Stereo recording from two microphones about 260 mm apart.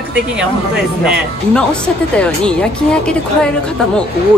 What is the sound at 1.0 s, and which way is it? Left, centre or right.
Speech, centre.